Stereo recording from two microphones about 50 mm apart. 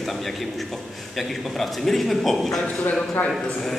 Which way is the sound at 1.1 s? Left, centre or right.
Centre.